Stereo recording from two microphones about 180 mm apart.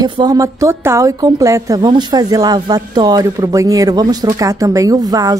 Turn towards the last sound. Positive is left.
turn(degrees=-20)  # may be behind; listen again after turning